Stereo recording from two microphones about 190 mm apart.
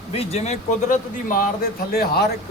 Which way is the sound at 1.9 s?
55° left (ahead or behind).